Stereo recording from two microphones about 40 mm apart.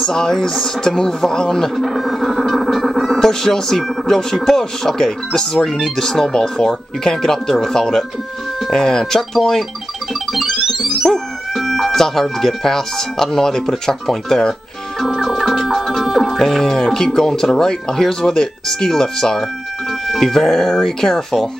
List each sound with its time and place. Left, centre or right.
0.0 s speech: centre
1.8 s speech: centre
2.3 s music: centre
3.2 s speech: centre
10.3 s speech: centre
15.0 s music: centre
16.3 s speech: centre